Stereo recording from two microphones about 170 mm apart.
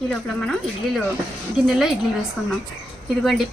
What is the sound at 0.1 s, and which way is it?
Speech, 5° left (ahead or behind).